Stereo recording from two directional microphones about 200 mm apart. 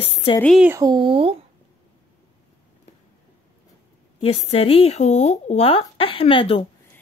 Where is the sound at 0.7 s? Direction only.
20° right (ahead or behind).